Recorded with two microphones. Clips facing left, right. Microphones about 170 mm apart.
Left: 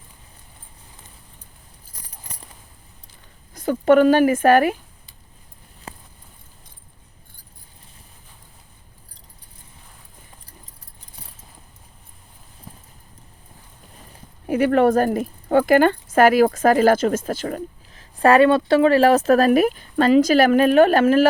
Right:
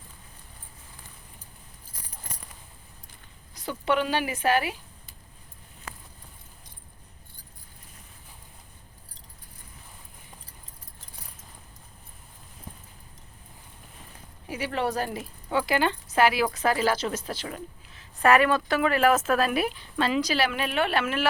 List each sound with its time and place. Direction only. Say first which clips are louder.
3.5 s speech: left 11 dB; 50° left (ahead or behind)
14.4 s speech: left 13 dB; 55° left (ahead or behind)